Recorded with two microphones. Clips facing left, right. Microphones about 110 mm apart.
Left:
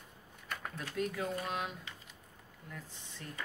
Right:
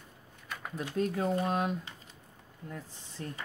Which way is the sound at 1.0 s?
35° right (ahead or behind).